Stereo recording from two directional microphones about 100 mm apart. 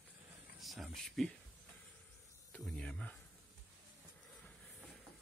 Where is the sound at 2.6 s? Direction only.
10° left (ahead or behind).